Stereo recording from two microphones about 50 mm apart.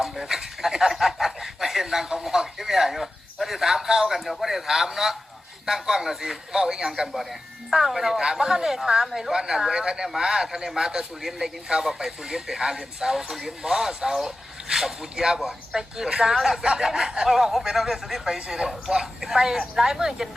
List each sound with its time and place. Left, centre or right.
0.0 s chuckle: centre
4.3 s speech: centre